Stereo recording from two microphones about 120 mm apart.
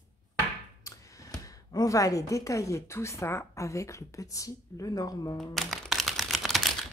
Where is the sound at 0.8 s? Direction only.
25° left (ahead or behind).